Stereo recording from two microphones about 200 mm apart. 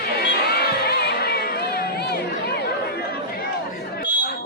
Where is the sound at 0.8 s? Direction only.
50° left (ahead or behind).